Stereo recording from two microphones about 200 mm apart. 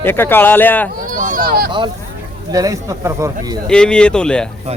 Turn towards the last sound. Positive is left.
turn(degrees=5)  # may be behind; listen again after turning